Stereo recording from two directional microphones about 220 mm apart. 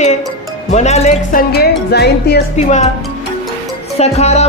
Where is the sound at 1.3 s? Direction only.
45° left (ahead or behind).